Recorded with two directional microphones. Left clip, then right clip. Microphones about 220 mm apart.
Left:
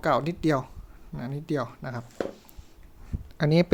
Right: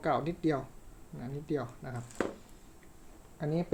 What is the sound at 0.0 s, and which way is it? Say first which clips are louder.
Speech: left 6 dB; 35° left (ahead or behind).